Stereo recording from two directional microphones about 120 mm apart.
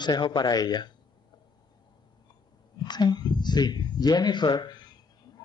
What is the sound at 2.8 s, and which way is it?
Speech, 35° left (ahead or behind).